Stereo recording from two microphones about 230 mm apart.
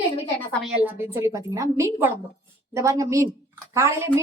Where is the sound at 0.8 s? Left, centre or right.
Centre.